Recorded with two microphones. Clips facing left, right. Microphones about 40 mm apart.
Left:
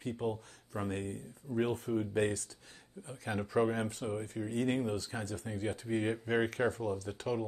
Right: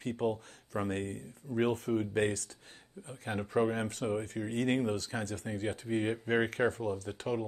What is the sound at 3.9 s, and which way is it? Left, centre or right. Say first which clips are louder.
Speech: right 4 dB; right.